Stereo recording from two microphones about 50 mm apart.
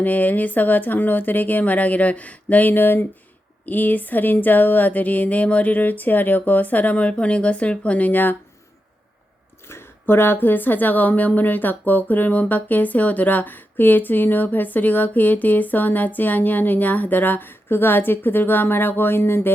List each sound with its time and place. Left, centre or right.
0.0 s speech: left
9.6 s a sound: left
10.4 s speech: left